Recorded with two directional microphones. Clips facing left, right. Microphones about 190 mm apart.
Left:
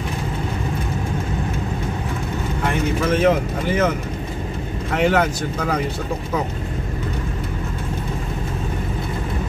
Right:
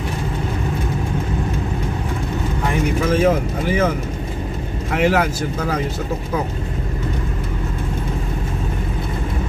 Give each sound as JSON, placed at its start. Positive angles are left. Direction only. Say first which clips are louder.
{"t": 3.0, "sound": "speech", "louder": "even", "side_deg": -10}
{"t": 4.9, "sound": "speech", "louder": "right 1 dB", "side_deg": -5}